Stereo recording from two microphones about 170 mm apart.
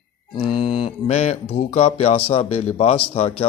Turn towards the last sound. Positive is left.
turn(degrees=35)  # may be behind; listen again after turning